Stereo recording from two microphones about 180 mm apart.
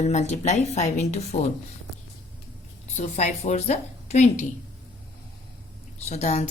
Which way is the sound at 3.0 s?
35° left (ahead or behind).